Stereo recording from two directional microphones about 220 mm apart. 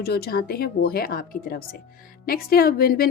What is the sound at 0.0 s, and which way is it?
Speech, 45° left (ahead or behind).